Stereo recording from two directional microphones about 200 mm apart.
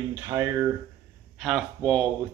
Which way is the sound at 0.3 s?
15° right (ahead or behind).